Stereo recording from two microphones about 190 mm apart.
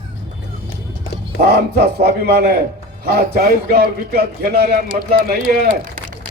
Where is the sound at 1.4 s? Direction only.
55° right (ahead or behind).